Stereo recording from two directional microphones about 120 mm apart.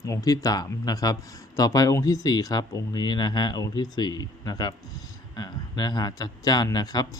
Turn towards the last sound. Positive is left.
turn(degrees=30)  # may be behind; listen again after turning